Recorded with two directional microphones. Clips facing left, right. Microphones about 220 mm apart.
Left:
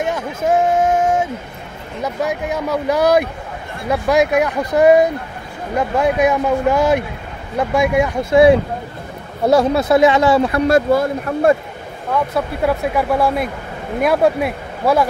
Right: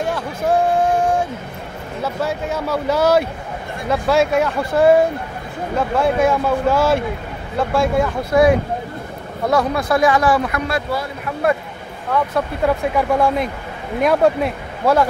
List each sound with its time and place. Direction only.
0.0 s a sound: 20° left (ahead or behind)
2.0 s speech: 15° left (ahead or behind)
10.7 s speech: 45° left (ahead or behind)
12.1 s speech: 10° left (ahead or behind)